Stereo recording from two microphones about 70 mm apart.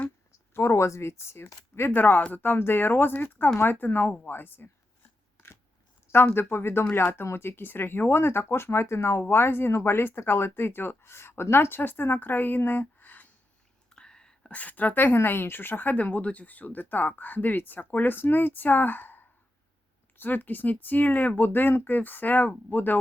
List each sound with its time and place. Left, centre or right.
0.5 s a woman's voice: left
6.1 s speech: left
13.9 s whispering: centre
14.5 s a woman's voice: left